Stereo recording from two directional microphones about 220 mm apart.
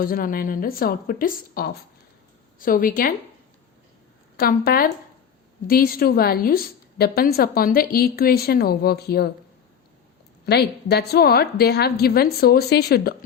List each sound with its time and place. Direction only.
0.0 s speech: 40° left (ahead or behind)
4.4 s a woman's voice: 40° left (ahead or behind)
10.4 s a woman's voice: 45° left (ahead or behind)